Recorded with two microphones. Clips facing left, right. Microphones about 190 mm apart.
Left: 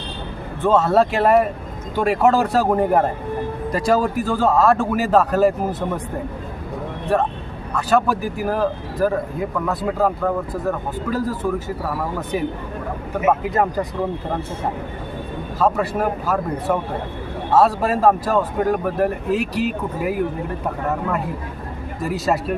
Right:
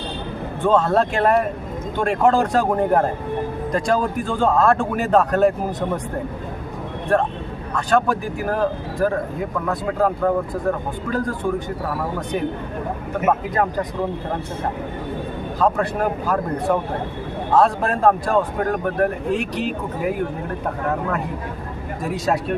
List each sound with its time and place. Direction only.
0.6 s speech: 5° left (ahead or behind)
7.1 s speech: 5° left (ahead or behind)
13.2 s speech: 10° left (ahead or behind)
15.5 s speech: 5° left (ahead or behind)
22.0 s speech: centre (ahead or behind)